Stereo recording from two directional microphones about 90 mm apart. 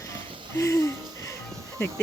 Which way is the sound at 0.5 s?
35° left (ahead or behind).